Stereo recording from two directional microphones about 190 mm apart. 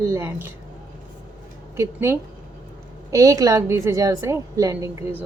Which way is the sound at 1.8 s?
15° right (ahead or behind).